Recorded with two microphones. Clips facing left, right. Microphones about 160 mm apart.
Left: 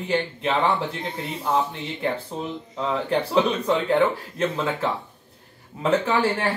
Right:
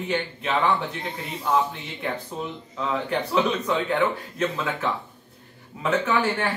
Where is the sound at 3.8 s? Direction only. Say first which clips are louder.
Left 3 dB; 30° left (ahead or behind).